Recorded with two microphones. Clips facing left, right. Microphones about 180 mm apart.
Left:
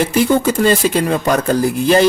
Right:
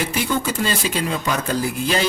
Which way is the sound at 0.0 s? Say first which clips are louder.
Left 9 dB; 45° left (ahead or behind).